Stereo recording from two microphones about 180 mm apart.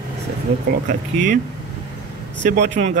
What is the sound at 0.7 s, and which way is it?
Speech, 45° right (ahead or behind).